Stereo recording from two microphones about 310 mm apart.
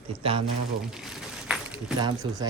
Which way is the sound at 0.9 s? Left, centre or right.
Centre.